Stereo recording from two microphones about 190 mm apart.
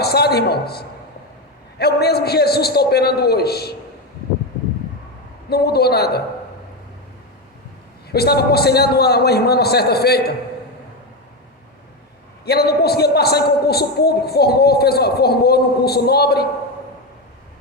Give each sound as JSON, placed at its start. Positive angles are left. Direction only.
{"t": 0.0, "sound": "a man's voice", "side_deg": 55}
{"t": 5.5, "sound": "a man's voice", "side_deg": 55}
{"t": 8.1, "sound": "a man's voice", "side_deg": 55}
{"t": 12.5, "sound": "a man's voice", "side_deg": 55}